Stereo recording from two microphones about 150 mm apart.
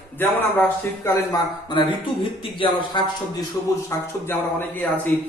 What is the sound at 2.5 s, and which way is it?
Speech, 35° left (ahead or behind).